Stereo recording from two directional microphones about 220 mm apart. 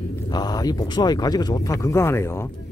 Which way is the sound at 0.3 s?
15° left (ahead or behind).